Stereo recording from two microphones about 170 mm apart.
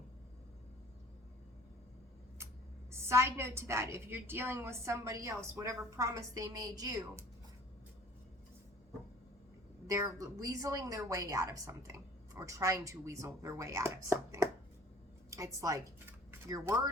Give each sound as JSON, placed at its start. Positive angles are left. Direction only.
{"t": 2.9, "sound": "a woman's voice", "side_deg": -15}
{"t": 9.8, "sound": "a woman's voice", "side_deg": -20}